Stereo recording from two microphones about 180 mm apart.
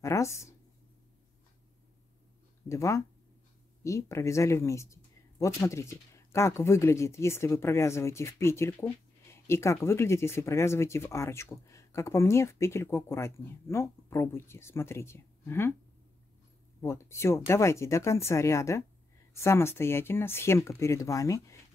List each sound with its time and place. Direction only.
0.0 s speech: 15° left (ahead or behind)
2.7 s speech: 15° left (ahead or behind)
16.8 s speech: 15° left (ahead or behind)